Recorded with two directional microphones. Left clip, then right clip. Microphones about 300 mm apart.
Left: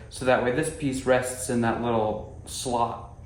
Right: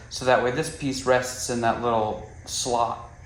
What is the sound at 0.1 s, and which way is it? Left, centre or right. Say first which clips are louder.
Speech: right 2 dB; centre.